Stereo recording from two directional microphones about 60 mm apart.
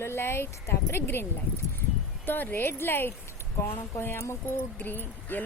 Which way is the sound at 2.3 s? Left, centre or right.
Left.